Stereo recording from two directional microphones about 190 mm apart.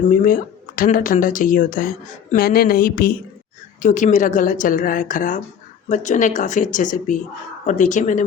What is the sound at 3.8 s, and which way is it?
Speech, 40° left (ahead or behind).